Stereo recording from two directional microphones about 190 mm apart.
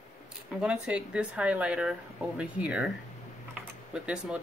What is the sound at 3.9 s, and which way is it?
Speech, 5° right (ahead or behind).